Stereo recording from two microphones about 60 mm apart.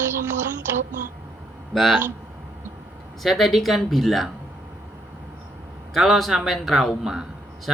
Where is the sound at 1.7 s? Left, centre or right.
Centre.